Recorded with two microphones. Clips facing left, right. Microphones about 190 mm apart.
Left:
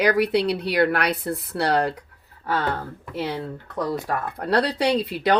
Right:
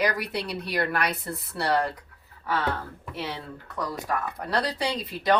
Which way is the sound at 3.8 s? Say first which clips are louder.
Left 4 dB; 60° left (ahead or behind).